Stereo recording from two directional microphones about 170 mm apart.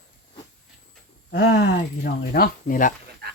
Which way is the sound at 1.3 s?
85° left.